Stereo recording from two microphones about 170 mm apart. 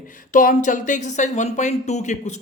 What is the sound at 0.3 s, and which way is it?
Speech, 50° left (ahead or behind).